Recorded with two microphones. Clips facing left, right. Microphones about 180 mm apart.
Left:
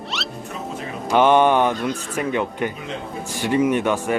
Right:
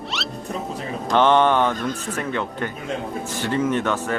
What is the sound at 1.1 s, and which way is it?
Speech, 10° left (ahead or behind).